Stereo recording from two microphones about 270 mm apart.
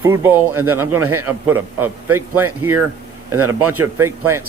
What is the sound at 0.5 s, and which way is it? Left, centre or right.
Speech, right.